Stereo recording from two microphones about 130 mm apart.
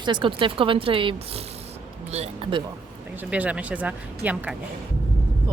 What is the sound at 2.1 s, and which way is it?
Speech, 55° right (ahead or behind).